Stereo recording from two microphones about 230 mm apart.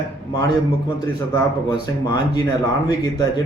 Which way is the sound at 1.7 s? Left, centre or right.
Centre.